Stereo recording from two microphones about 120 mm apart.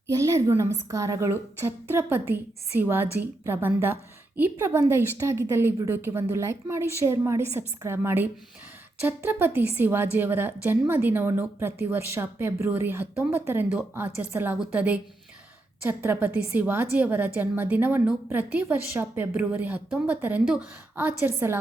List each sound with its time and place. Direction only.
0.1 s a woman's voice: 25° right (ahead or behind)